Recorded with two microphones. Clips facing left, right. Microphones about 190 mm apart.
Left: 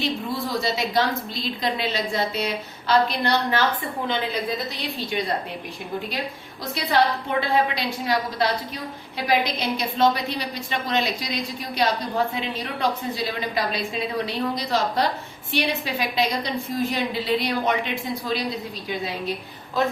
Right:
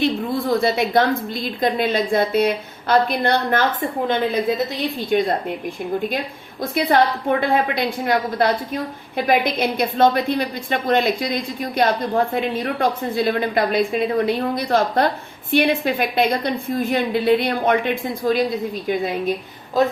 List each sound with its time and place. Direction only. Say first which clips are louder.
0.0 s a woman's voice: right 6 dB; 55° right (ahead or behind)
6.6 s a woman's voice: right 5 dB; 50° right (ahead or behind)